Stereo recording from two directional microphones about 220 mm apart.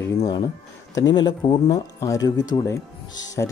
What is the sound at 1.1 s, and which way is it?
Speech, 20° left (ahead or behind).